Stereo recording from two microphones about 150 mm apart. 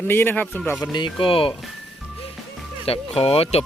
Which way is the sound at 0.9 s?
35° left (ahead or behind).